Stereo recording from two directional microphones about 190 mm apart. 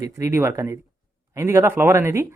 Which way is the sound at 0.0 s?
15° right (ahead or behind).